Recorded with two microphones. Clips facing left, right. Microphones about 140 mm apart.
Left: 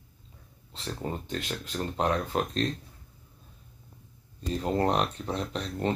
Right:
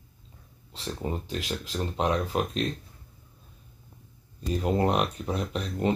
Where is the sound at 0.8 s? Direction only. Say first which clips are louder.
Right 2 dB; 15° right (ahead or behind).